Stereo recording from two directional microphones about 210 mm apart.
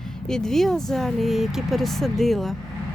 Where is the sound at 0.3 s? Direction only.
5° left (ahead or behind).